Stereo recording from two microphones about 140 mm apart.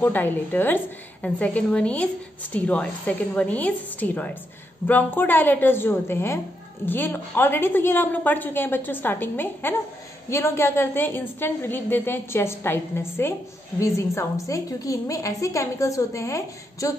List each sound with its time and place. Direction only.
0.0 s a woman's voice: 15° left (ahead or behind)